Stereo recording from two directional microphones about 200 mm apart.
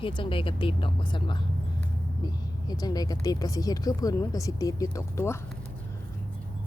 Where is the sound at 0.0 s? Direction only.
25° left (ahead or behind).